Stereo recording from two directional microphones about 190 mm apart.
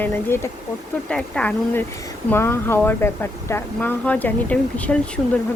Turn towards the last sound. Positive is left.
turn(degrees=5)  # may be behind; listen again after turning